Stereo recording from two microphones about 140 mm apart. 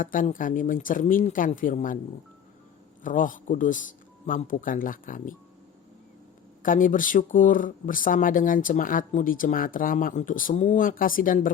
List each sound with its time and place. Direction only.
0.0 s speech: 75° left (ahead or behind)
3.0 s speech: 70° left (ahead or behind)
6.6 s speech: 75° left (ahead or behind)